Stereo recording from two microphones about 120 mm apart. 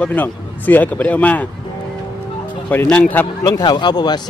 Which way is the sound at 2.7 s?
10° left (ahead or behind).